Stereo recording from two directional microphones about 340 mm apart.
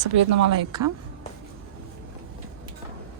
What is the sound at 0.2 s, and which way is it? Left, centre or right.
Speech, right.